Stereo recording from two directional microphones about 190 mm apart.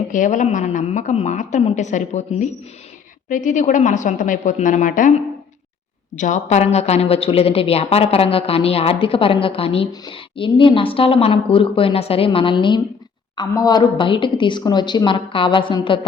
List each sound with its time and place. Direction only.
0.1 s a woman's voice: 40° left (ahead or behind)
6.1 s a woman's voice: 40° left (ahead or behind)